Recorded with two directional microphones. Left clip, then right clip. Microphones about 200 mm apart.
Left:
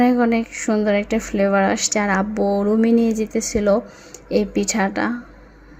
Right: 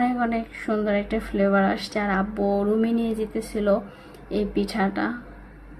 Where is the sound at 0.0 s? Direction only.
35° left (ahead or behind).